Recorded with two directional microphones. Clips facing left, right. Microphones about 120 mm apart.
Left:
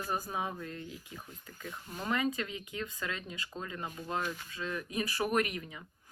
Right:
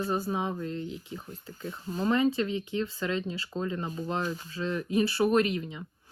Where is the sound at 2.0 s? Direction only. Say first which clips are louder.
Right 7 dB; 35° right (ahead or behind).